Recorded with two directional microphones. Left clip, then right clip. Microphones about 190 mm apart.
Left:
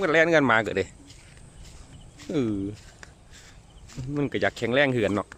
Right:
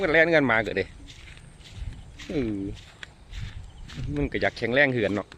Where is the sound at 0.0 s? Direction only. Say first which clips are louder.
Even; 5° left (ahead or behind).